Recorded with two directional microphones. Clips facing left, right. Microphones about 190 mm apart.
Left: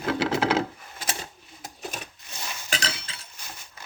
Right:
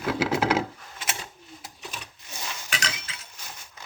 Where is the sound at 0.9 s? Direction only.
35° left (ahead or behind).